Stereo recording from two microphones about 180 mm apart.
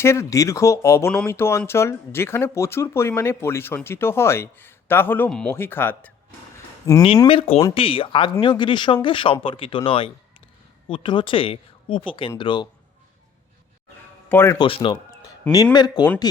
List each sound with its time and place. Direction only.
0.0 s speech: 15° left (ahead or behind)
7.3 s speech: 30° left (ahead or behind)
14.3 s a man's voice: 15° left (ahead or behind)
14.6 s speech: 30° left (ahead or behind)